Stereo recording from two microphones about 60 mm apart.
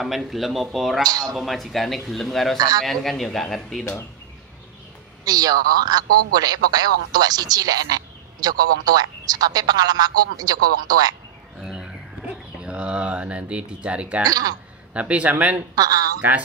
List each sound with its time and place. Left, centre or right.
0.0 s speech: centre
1.0 s a man's voice: right
1.3 s speech: centre
5.2 s a man's voice: right
11.6 s a sound: centre
14.2 s a man's voice: right
15.0 s speech: right
15.7 s a man's voice: right